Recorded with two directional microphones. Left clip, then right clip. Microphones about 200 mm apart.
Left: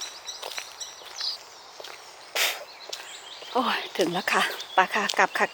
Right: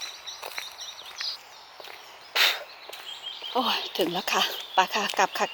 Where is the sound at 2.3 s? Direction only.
10° right (ahead or behind).